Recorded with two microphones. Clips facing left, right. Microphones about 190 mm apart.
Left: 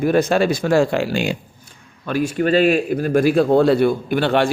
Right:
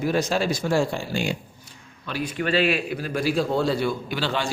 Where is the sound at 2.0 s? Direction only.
45° left (ahead or behind).